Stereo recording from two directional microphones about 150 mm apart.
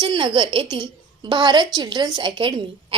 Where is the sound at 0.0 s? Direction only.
30° right (ahead or behind).